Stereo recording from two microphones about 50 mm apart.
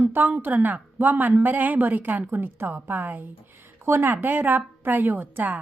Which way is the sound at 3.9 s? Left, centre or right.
Right.